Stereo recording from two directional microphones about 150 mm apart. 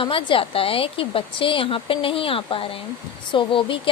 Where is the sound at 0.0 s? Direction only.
35° left (ahead or behind).